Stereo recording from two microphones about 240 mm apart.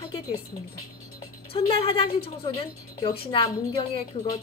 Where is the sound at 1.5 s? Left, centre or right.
Left.